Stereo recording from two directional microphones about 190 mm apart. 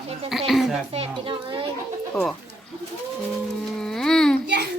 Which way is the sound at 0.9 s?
30° right (ahead or behind).